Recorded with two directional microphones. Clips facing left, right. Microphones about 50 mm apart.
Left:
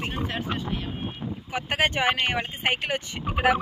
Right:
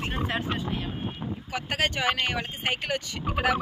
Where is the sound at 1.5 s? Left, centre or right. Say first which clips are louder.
Left 3 dB; left.